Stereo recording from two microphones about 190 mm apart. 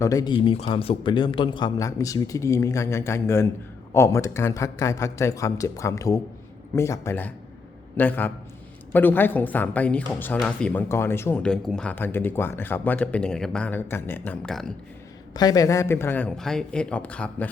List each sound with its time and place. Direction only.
0.0 s speech: 20° left (ahead or behind); by 14.7 s 5° left (ahead or behind)
15.3 s speech: 20° left (ahead or behind)